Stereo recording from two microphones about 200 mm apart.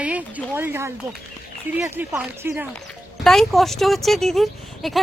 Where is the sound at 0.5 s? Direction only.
10° right (ahead or behind).